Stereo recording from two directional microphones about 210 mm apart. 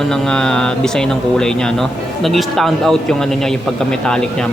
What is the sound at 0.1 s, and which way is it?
Speech, 5° left (ahead or behind).